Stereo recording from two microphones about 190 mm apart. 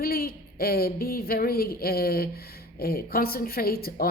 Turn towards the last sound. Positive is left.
turn(degrees=50)  # may be behind; listen again after turning